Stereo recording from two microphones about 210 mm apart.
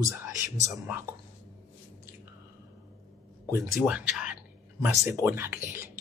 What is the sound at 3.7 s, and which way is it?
Speech, 5° right (ahead or behind).